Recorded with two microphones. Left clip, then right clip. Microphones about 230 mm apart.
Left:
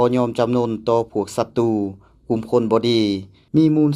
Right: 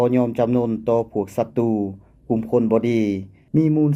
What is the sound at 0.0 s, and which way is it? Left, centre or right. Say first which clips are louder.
Speech: left 1 dB; left.